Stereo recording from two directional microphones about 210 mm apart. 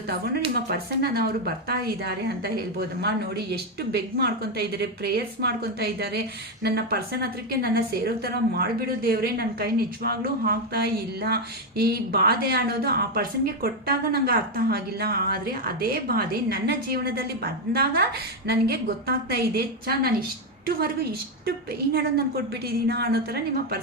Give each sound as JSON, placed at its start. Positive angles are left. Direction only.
{"t": 0.5, "sound": "a woman's voice", "side_deg": -50}
{"t": 22.9, "sound": "a woman's voice", "side_deg": -50}